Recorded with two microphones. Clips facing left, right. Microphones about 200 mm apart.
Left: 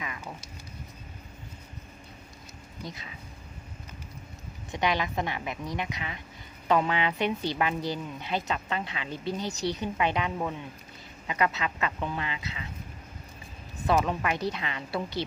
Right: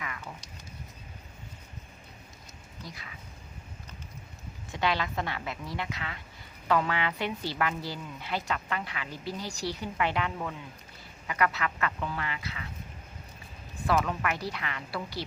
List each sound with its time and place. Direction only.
2.8 s a woman's voice: 20° left (ahead or behind)
4.7 s a woman's voice: 15° left (ahead or behind)
13.8 s a woman's voice: 20° left (ahead or behind)